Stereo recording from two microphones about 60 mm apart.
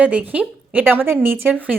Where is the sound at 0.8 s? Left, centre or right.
Right.